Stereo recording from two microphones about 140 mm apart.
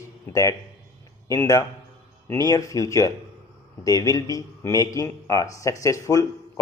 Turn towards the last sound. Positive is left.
turn(degrees=25)  # may be behind; listen again after turning